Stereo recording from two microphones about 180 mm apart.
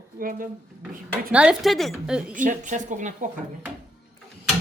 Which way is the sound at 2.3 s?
45° right (ahead or behind).